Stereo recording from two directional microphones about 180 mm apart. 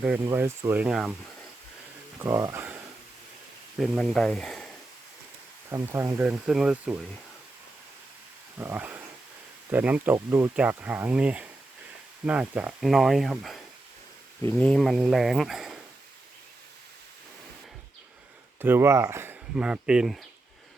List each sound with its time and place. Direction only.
0.3 s speech: 15° right (ahead or behind)
2.2 s speech: 15° right (ahead or behind)
3.8 s speech: centre (ahead or behind)
5.7 s speech: 15° right (ahead or behind)
8.5 s speech: 10° right (ahead or behind)
18.6 s speech: 10° right (ahead or behind)